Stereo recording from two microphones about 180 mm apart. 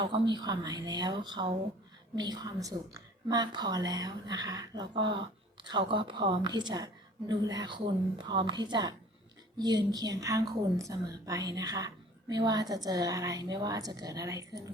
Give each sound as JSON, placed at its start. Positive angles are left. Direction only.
{"t": 0.0, "sound": "a woman's voice", "side_deg": -25}